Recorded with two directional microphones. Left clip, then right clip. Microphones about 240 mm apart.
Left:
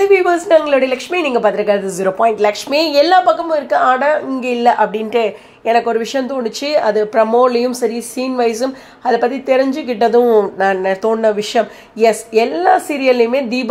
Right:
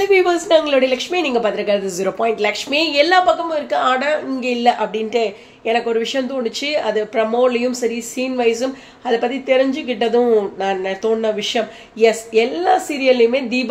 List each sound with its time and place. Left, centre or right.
0.0 s a woman's voice: centre